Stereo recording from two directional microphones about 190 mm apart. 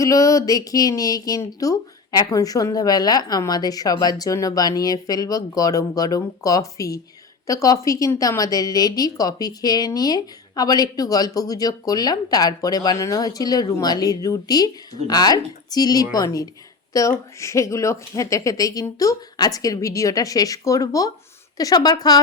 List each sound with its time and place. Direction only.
0.0 s a woman's voice: 15° left (ahead or behind)